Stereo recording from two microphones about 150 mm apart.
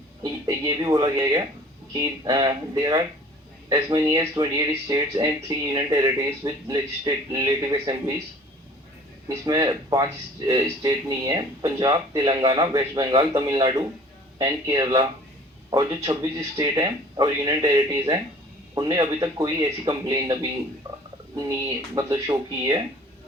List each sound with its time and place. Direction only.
0.2 s speech: 25° right (ahead or behind)
9.5 s speech: 25° right (ahead or behind)